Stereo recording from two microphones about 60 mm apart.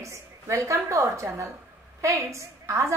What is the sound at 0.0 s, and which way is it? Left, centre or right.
A woman's voice, right.